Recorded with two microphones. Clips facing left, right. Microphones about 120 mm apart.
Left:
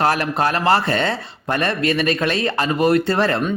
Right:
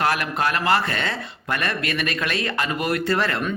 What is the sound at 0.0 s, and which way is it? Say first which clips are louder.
Speech: left 4 dB; 35° left (ahead or behind).